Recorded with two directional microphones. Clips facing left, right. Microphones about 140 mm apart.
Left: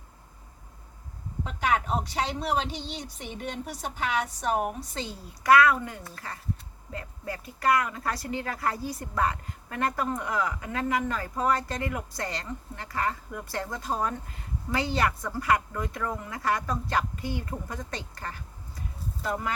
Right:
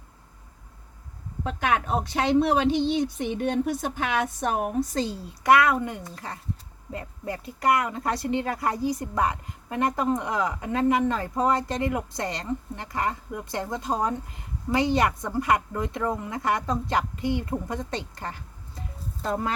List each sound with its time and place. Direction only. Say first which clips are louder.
2.4 s speech: right 8 dB; 55° right (ahead or behind)
5.5 s speech: right 1 dB; 20° right (ahead or behind)